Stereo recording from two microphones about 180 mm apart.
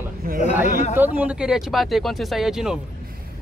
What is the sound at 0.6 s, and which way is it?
Speech, 45° left (ahead or behind).